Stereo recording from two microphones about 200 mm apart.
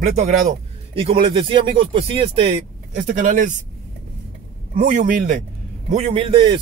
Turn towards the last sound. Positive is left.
turn(degrees=-25)  # may be behind; listen again after turning